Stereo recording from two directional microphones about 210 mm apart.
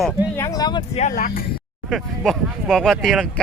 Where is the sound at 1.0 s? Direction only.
40° left (ahead or behind).